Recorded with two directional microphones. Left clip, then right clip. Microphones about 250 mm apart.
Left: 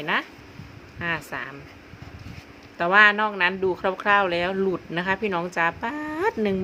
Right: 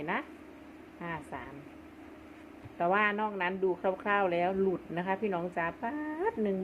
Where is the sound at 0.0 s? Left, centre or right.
Centre.